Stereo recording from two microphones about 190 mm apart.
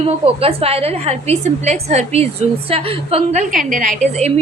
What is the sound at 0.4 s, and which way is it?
A woman's voice, 30° right (ahead or behind).